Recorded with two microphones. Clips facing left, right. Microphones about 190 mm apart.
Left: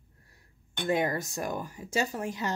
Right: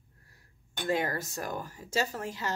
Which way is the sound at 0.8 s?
20° left (ahead or behind).